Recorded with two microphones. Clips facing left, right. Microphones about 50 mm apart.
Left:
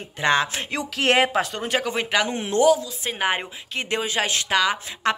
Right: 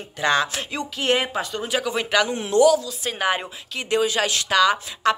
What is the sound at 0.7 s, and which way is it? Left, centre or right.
Speech, left.